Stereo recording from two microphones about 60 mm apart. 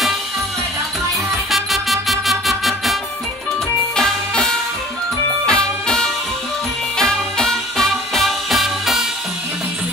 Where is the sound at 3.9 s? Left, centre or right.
Centre.